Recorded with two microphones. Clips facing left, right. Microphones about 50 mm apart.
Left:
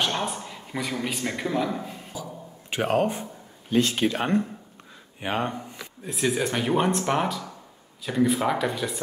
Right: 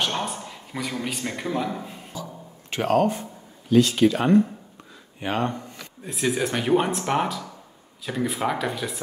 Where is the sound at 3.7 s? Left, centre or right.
Left.